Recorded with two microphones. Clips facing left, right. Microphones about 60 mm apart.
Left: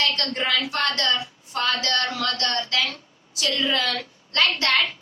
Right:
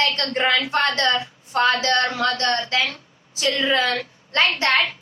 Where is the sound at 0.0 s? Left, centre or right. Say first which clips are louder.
Right 4 dB; right.